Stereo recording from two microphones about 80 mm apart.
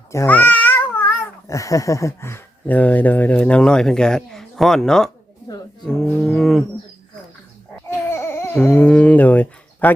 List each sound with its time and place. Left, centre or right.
0.3 s babbling: left
1.5 s a sound: left
2.6 s speech: left
5.8 s cattle: centre
8.1 s baby cry: left
8.8 s speech: centre